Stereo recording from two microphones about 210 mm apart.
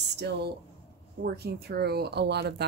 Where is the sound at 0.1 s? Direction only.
55° right (ahead or behind).